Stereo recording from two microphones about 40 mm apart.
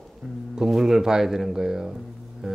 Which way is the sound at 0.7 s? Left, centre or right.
Centre.